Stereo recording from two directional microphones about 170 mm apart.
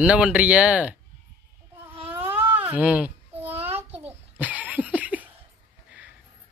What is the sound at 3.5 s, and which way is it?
Child singing, 35° right (ahead or behind).